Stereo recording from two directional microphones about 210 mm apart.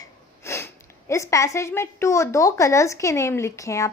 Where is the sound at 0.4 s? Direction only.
10° left (ahead or behind).